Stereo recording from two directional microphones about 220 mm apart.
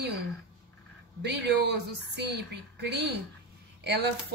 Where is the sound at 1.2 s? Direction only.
50° right (ahead or behind).